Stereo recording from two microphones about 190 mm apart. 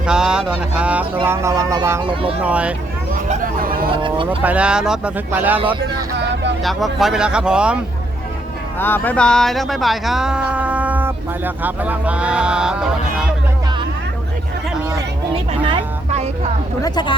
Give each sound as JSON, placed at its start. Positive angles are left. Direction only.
{"t": 0.0, "sound": "speech", "side_deg": -5}
{"t": 2.4, "sound": "speech", "side_deg": -5}
{"t": 3.2, "sound": "speech", "side_deg": -50}
{"t": 4.3, "sound": "speech", "side_deg": -5}
{"t": 6.6, "sound": "speech", "side_deg": 0}
{"t": 8.8, "sound": "speech", "side_deg": 10}
{"t": 15.6, "sound": "speech", "side_deg": -30}
{"t": 16.8, "sound": "speech", "side_deg": 20}